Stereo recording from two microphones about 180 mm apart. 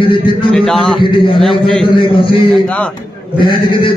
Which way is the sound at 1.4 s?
Centre (ahead or behind).